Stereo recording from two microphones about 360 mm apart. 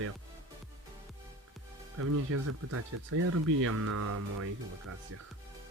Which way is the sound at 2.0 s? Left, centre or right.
Right.